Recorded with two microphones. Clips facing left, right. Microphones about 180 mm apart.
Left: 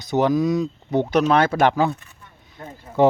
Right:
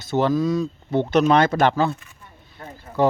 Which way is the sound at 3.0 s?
20° left (ahead or behind).